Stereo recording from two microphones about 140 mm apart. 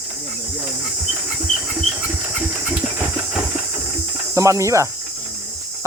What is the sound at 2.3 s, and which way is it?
Engine, 10° right (ahead or behind).